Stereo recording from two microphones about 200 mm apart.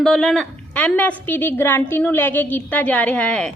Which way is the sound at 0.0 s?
Centre (ahead or behind).